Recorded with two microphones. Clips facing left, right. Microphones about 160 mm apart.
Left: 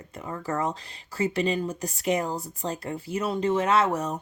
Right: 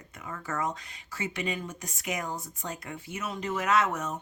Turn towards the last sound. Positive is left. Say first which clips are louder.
# left 4 dB
turn(degrees=30)  # may be behind; listen again after turning